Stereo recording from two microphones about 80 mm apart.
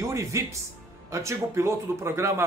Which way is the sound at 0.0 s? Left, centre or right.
Right.